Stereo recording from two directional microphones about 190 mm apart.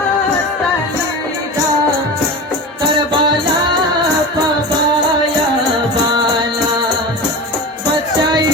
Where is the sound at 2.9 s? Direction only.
25° right (ahead or behind).